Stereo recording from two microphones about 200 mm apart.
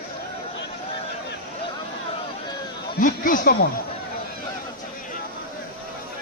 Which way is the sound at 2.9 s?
45° left (ahead or behind).